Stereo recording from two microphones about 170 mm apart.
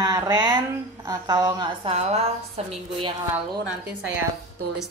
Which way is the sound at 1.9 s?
40° right (ahead or behind).